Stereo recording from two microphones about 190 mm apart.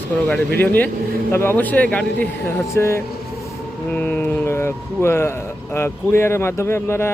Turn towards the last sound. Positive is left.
turn(degrees=15)  # may be behind; listen again after turning